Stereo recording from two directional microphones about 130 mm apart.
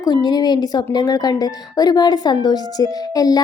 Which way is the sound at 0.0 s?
30° left (ahead or behind).